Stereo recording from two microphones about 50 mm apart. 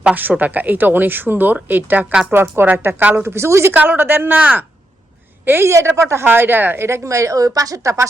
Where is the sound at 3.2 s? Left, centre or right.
Right.